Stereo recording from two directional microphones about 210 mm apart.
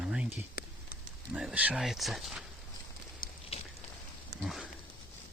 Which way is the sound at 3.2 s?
40° left (ahead or behind).